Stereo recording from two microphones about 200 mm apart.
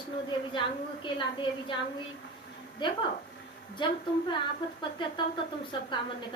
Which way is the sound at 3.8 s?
25° left (ahead or behind).